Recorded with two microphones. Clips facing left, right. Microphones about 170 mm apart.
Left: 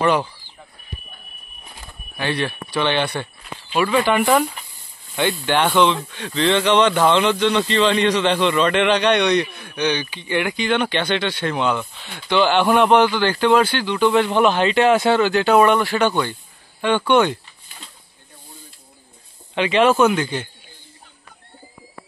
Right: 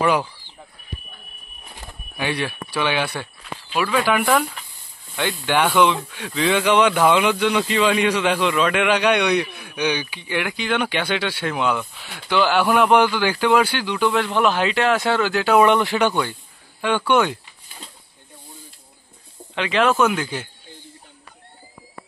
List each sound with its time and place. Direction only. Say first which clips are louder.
0.0 s speech: left 1 dB; centre (ahead or behind)
2.1 s speech: left 1 dB; 10° right (ahead or behind)
5.8 s speech: left 1 dB; 10° right (ahead or behind)
15.6 s speech: even; 20° right (ahead or behind)
17.1 s speech: left 2 dB; 5° right (ahead or behind)
19.5 s speech: left 3 dB; centre (ahead or behind)